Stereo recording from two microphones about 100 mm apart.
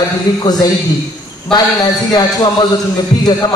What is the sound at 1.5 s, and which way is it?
A man's voice, 40° left (ahead or behind).